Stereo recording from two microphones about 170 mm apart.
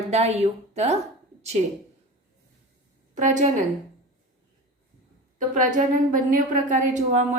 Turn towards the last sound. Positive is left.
turn(degrees=-45)  # may be behind; listen again after turning